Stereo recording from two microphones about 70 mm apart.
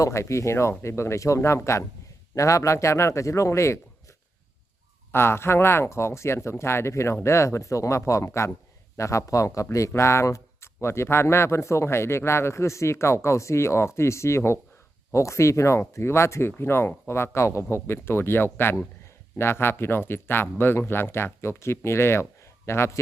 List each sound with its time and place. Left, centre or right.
0.0 s speech: left
5.1 s speech: left